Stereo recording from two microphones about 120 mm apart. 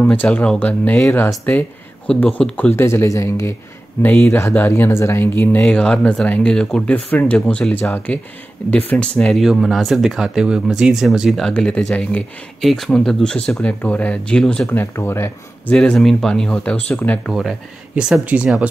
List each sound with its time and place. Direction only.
0.0 s speech: 15° left (ahead or behind)
2.7 s speech: 20° left (ahead or behind)
4.0 s speech: 15° left (ahead or behind)
14.7 s speech: 20° left (ahead or behind)
15.7 s speech: 5° left (ahead or behind)
17.3 s speech: centre (ahead or behind)